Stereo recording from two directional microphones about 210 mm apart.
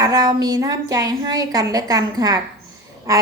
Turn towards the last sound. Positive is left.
turn(degrees=-15)  # may be behind; listen again after turning